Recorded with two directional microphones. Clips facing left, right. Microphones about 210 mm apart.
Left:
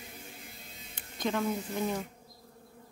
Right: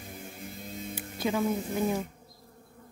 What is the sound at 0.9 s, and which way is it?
Speech, 5° right (ahead or behind).